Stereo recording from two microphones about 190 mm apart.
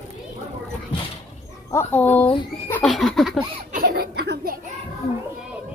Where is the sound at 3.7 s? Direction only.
50° right (ahead or behind).